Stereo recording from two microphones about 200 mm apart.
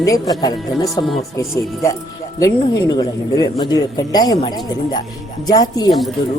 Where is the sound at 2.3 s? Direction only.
20° left (ahead or behind).